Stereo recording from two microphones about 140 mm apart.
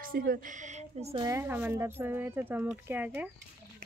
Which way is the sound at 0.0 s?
90° right.